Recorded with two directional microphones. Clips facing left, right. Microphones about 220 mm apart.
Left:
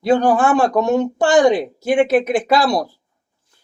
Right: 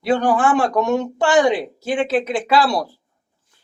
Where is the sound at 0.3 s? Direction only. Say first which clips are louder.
Left 2 dB; 40° left (ahead or behind).